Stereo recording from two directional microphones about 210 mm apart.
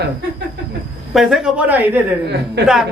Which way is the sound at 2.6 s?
55° right (ahead or behind).